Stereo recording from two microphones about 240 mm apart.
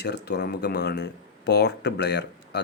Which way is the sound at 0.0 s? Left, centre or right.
Left.